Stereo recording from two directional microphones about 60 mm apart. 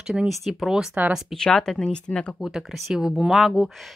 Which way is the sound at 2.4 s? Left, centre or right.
Centre.